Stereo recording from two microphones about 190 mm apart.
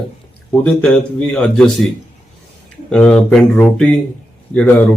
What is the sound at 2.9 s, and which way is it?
Speech, 5° left (ahead or behind).